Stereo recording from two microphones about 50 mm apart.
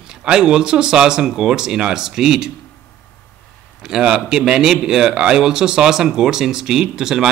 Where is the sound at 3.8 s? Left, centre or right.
Centre.